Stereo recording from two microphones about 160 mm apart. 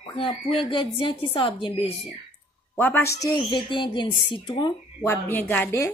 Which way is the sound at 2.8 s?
10° left (ahead or behind).